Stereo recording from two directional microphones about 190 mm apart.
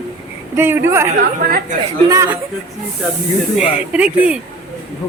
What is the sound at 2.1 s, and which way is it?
Speech, 15° right (ahead or behind).